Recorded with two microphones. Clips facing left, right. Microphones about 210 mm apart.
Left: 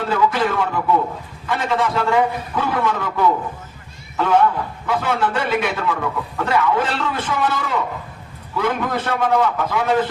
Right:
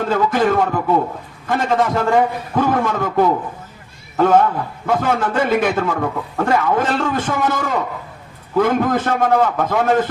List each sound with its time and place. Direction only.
0.0 s a man's voice: 45° right (ahead or behind)